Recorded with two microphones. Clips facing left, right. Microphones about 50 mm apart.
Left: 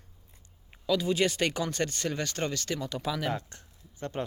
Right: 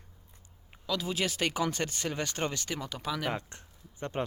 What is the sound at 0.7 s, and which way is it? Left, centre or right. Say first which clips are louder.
Speech: left 6 dB; centre.